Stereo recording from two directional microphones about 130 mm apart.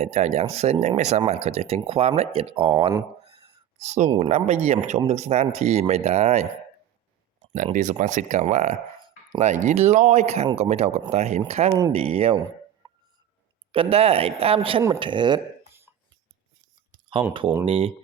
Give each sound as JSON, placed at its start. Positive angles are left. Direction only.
{"t": 0.0, "sound": "speech", "side_deg": -55}
{"t": 3.8, "sound": "speech", "side_deg": -65}
{"t": 7.5, "sound": "speech", "side_deg": -75}
{"t": 12.8, "sound": "hiccup", "side_deg": -35}
{"t": 13.7, "sound": "speech", "side_deg": -50}
{"t": 17.7, "sound": "speech", "side_deg": -50}